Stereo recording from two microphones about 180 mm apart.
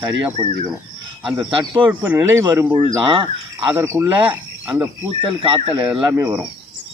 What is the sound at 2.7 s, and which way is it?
Speech, 25° right (ahead or behind).